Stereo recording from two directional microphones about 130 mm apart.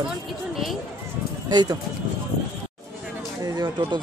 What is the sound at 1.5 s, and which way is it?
Speech, 35° right (ahead or behind).